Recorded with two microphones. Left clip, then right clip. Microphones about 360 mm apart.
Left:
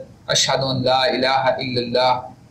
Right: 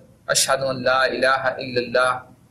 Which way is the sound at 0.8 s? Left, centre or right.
Right.